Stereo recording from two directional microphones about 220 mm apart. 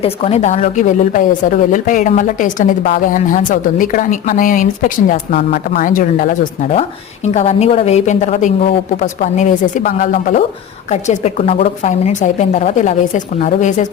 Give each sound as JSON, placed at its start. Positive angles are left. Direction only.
{"t": 0.0, "sound": "a woman's voice", "side_deg": 25}